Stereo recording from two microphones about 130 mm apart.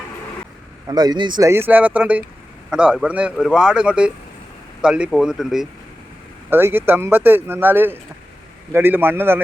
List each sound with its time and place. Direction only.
0.9 s speech: 30° right (ahead or behind)
1.5 s a man's voice: 15° right (ahead or behind)
6.5 s speech: 15° right (ahead or behind)